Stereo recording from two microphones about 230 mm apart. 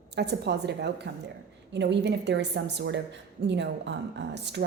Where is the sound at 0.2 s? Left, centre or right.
Right.